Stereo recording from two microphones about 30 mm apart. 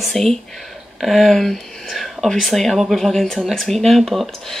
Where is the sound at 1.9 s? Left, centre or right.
Centre.